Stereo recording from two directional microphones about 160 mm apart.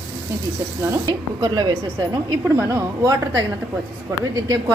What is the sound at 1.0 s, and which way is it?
A woman's voice, 25° right (ahead or behind).